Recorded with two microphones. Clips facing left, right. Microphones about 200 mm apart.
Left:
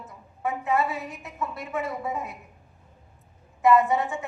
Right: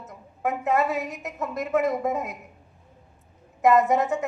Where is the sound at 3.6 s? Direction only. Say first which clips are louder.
Right 1 dB; 40° right (ahead or behind).